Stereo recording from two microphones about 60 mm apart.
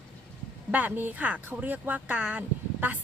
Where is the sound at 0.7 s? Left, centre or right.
Right.